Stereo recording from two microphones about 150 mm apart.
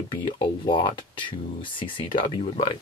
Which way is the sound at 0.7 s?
35° left (ahead or behind).